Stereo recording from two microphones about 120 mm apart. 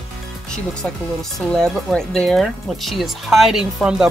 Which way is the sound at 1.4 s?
5° left (ahead or behind).